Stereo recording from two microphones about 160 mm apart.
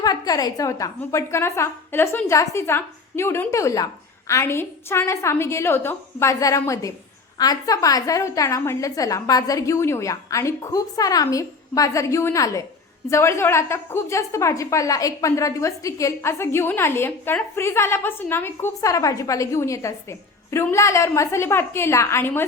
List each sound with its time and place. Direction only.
0.0 s a woman's voice: 25° left (ahead or behind)